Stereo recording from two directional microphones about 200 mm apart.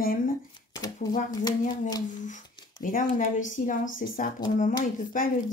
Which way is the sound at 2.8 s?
40° left (ahead or behind).